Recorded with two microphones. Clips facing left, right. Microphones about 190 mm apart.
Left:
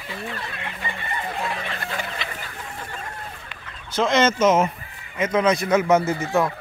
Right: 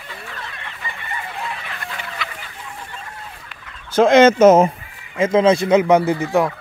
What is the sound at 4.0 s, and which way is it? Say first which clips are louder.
Speech: right 8 dB; 55° right (ahead or behind).